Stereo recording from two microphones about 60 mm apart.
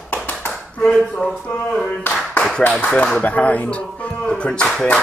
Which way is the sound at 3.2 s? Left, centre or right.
Left.